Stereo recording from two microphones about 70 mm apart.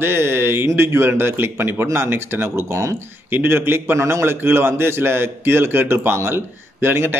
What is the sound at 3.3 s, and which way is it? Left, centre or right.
Speech, right.